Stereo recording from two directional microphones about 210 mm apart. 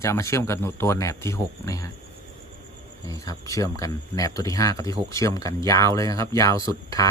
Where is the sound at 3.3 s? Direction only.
15° left (ahead or behind).